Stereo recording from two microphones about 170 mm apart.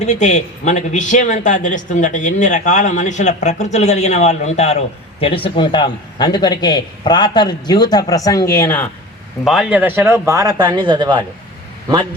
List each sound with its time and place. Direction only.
0.0 s a man's voice: 45° left (ahead or behind); by 8.9 s 15° left (ahead or behind)
9.4 s speech: centre (ahead or behind); by 11.2 s 25° right (ahead or behind)